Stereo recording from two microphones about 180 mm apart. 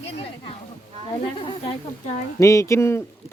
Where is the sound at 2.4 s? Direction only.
15° left (ahead or behind).